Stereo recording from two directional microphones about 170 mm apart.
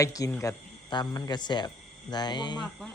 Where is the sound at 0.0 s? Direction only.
20° left (ahead or behind).